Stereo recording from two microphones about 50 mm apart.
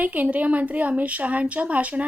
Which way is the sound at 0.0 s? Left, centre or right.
Right.